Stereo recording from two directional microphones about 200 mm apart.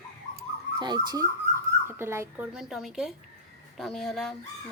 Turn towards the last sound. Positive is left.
turn(degrees=0)  # may be behind; listen again after turning